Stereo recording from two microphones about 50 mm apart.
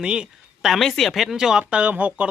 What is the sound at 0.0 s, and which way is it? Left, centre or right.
Speech, centre.